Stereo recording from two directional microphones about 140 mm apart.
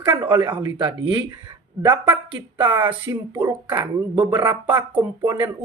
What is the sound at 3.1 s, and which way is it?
Speech, 25° right (ahead or behind).